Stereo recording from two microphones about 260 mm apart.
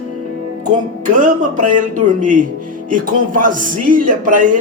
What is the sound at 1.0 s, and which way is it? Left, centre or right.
Speech, right.